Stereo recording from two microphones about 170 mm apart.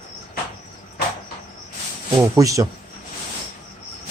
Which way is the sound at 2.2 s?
20° right (ahead or behind).